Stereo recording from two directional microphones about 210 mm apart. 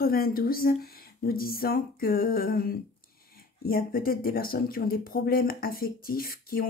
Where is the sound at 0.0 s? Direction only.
45° left (ahead or behind).